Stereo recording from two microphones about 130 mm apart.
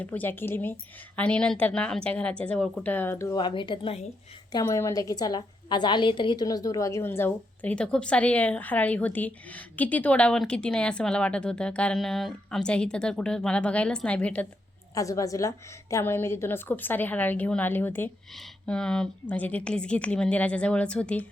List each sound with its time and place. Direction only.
0.0 s a woman's voice: 15° left (ahead or behind)
3.3 s speech: 35° left (ahead or behind)
4.6 s a woman's voice: 20° left (ahead or behind)
14.9 s a woman's voice: 25° left (ahead or behind)
18.3 s a woman's voice: 5° left (ahead or behind)